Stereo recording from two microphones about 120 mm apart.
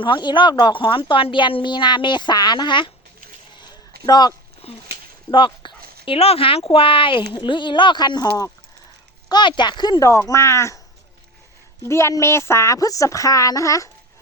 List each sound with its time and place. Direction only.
0.0 s speech: 40° left (ahead or behind)
3.6 s a sound: 35° left (ahead or behind)
4.6 s speech: 55° left (ahead or behind)
5.3 s speech: 45° left (ahead or behind); by 10.8 s 25° left (ahead or behind)
11.9 s speech: 25° left (ahead or behind)